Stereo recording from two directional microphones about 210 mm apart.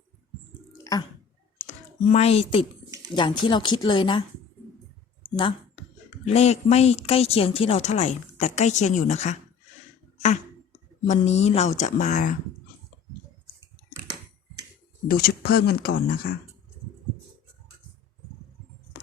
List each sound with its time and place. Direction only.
1.5 s computer keyboard: 35° left (ahead or behind)
3.2 s speech: 20° left (ahead or behind)
5.4 s a sound: 25° left (ahead or behind)
6.2 s a woman's voice: 30° left (ahead or behind)
11.0 s a woman's voice: 35° left (ahead or behind)
15.0 s speech: 45° left (ahead or behind)